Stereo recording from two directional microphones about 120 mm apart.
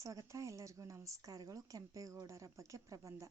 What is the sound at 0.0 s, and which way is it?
Speech, 25° right (ahead or behind).